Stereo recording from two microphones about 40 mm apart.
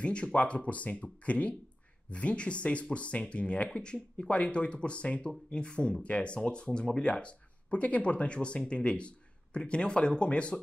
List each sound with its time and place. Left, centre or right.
0.0 s speech: left